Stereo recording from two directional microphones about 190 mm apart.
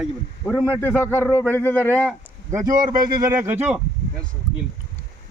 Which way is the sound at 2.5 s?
15° right (ahead or behind).